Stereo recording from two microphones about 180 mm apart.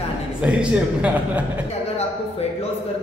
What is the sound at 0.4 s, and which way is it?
A man's voice, 5° right (ahead or behind).